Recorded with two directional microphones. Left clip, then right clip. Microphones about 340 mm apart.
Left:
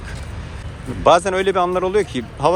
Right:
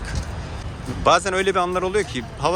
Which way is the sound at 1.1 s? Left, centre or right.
Centre.